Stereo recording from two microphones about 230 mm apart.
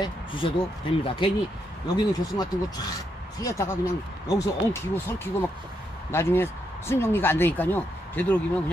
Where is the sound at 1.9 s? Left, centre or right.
Centre.